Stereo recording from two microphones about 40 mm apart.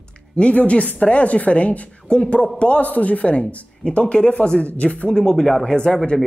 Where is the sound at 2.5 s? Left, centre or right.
Left.